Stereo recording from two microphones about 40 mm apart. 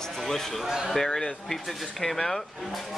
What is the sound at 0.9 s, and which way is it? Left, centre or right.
Speech, centre.